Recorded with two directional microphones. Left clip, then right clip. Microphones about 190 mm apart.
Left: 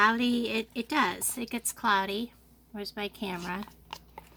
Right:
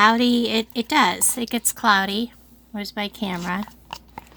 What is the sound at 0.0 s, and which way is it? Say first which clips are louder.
A woman's voice: right 8 dB; 40° right (ahead or behind).